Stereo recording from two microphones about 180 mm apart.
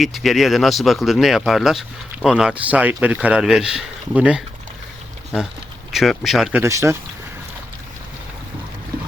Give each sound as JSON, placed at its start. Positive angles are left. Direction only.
{"t": 0.0, "sound": "speech", "side_deg": 0}
{"t": 5.9, "sound": "speech", "side_deg": 0}
{"t": 6.6, "sound": "speech", "side_deg": -15}